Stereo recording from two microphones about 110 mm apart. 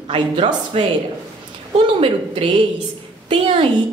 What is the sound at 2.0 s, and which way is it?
A woman's voice, 50° right (ahead or behind).